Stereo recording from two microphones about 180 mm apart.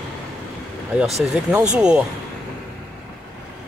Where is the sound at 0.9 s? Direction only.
5° right (ahead or behind).